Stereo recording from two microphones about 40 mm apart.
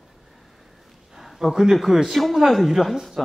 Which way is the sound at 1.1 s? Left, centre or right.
Centre.